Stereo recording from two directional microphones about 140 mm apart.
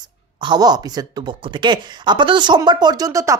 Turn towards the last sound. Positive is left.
turn(degrees=-25)  # may be behind; listen again after turning